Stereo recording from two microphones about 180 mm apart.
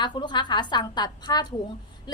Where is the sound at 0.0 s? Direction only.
25° left (ahead or behind).